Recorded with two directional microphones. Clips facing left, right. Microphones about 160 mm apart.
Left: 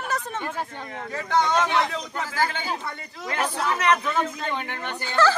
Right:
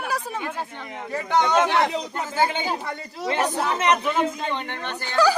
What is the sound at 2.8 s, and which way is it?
Speech, 35° right (ahead or behind).